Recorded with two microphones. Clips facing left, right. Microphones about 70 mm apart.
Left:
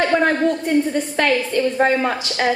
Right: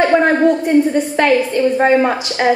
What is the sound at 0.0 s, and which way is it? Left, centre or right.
A woman's voice, right.